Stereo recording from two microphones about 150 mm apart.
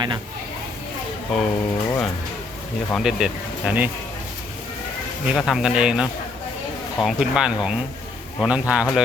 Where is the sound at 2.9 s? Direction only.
5° right (ahead or behind).